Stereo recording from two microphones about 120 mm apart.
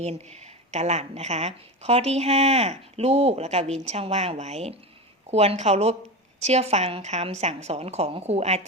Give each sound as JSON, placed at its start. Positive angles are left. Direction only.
{"t": 0.0, "sound": "speech", "side_deg": -65}